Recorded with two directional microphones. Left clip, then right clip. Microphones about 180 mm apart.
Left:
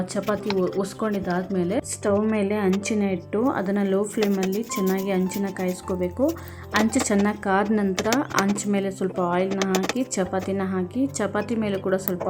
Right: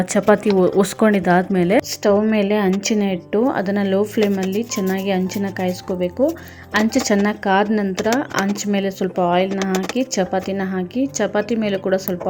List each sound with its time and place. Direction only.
0.0 s speech: 30° right (ahead or behind)
0.4 s speech: centre (ahead or behind)
0.8 s a woman's voice: 35° right (ahead or behind)
2.3 s a woman's voice: 15° right (ahead or behind)
4.2 s speech: centre (ahead or behind)
5.0 s a woman's voice: 15° right (ahead or behind)
5.6 s speech: centre (ahead or behind)
8.7 s a woman's voice: 10° right (ahead or behind)
9.7 s a woman's voice: centre (ahead or behind)